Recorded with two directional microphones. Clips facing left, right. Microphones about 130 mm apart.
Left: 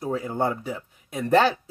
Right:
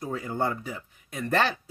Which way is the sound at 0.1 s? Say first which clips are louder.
Left 3 dB; 20° left (ahead or behind).